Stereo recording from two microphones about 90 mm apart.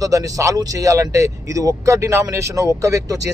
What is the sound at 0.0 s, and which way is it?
Speech, 40° right (ahead or behind).